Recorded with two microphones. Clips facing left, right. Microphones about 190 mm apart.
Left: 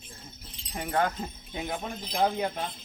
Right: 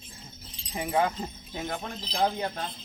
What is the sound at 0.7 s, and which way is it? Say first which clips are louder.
Speech: right 1 dB; 5° right (ahead or behind).